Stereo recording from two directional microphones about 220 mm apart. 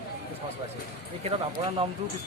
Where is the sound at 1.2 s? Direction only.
25° right (ahead or behind).